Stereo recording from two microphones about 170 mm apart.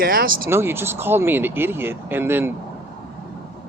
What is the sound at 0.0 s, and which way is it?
Speech, 60° right (ahead or behind).